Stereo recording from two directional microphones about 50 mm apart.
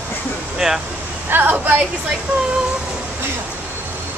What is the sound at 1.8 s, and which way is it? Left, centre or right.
Speech, right.